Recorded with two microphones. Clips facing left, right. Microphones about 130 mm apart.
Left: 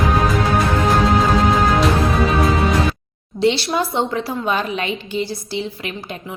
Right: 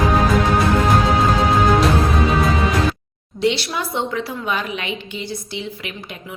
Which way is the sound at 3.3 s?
30° left (ahead or behind).